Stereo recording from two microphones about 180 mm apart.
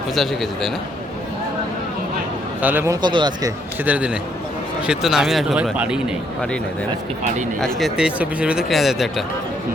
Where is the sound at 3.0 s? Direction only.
25° right (ahead or behind).